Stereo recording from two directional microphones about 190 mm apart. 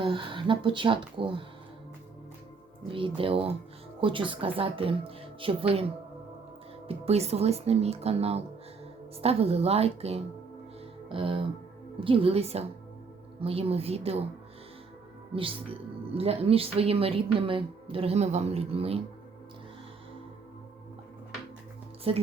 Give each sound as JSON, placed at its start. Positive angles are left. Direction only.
{"t": 0.0, "sound": "speech", "side_deg": -25}
{"t": 2.9, "sound": "speech", "side_deg": -30}
{"t": 6.8, "sound": "a woman's voice", "side_deg": -35}
{"t": 15.4, "sound": "a woman's voice", "side_deg": -30}
{"t": 22.1, "sound": "a woman's voice", "side_deg": -30}